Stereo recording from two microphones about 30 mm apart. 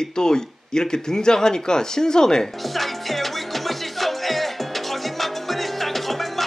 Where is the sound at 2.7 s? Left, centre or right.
Centre.